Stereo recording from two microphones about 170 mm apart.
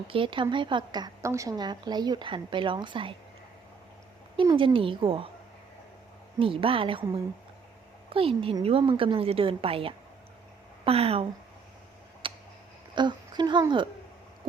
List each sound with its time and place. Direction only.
0.1 s a woman's voice: 30° right (ahead or behind)
4.4 s a woman's voice: 30° right (ahead or behind)
6.4 s a woman's voice: 30° right (ahead or behind)
12.2 s a sound: 30° right (ahead or behind)
13.0 s a woman's voice: 25° right (ahead or behind)